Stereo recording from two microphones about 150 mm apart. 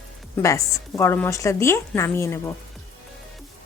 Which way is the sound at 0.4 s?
20° left (ahead or behind).